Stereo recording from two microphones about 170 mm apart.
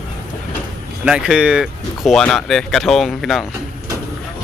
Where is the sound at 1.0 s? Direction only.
5° right (ahead or behind).